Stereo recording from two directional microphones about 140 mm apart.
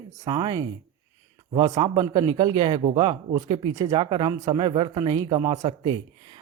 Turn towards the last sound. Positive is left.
turn(degrees=-30)  # may be behind; listen again after turning